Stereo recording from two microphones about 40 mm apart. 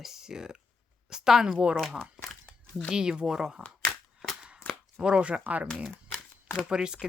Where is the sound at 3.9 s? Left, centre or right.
Left.